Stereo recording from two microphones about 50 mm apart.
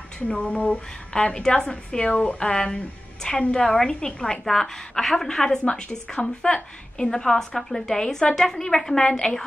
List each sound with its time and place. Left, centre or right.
0.3 s a woman's voice: left
1.1 s a woman's voice: centre